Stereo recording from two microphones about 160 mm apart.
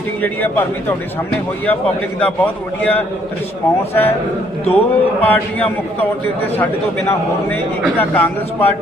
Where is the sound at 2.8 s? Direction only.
10° left (ahead or behind).